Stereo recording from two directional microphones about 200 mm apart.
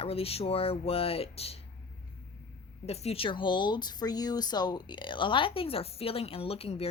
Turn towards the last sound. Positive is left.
turn(degrees=30)  # may be behind; listen again after turning